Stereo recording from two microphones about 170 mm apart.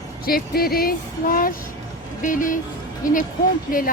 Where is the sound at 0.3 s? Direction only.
60° left (ahead or behind).